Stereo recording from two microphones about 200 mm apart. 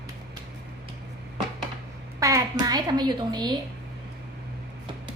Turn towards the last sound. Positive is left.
turn(degrees=-20)  # may be behind; listen again after turning